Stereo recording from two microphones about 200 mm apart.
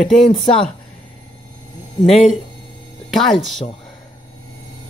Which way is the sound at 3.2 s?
Centre (ahead or behind).